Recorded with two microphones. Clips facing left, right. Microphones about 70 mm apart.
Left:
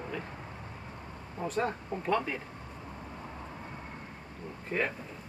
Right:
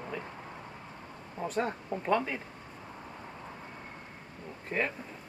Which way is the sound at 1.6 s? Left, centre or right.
Right.